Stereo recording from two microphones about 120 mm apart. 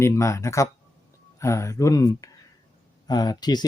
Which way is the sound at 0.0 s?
25° left (ahead or behind).